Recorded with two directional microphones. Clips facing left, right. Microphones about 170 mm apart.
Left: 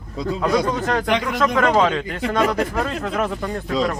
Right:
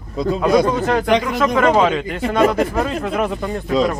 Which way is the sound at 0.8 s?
10° right (ahead or behind).